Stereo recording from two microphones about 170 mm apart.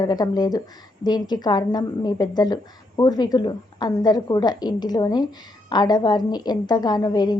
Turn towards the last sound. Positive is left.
turn(degrees=25)  # may be behind; listen again after turning